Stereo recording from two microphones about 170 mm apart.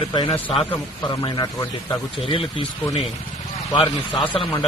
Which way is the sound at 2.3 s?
30° left (ahead or behind).